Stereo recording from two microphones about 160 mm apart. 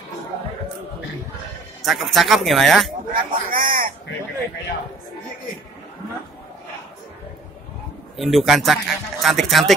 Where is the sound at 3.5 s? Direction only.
65° right (ahead or behind).